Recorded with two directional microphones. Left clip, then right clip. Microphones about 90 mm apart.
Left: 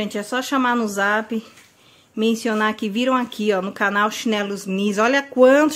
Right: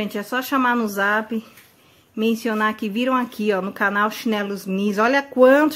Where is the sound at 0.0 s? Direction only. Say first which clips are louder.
Left 1 dB; 20° left (ahead or behind).